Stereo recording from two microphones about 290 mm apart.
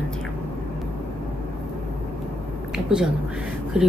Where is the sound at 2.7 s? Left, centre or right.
Centre.